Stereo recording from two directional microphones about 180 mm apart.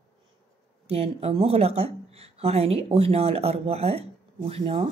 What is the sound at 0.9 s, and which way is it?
A woman's voice, 35° right (ahead or behind).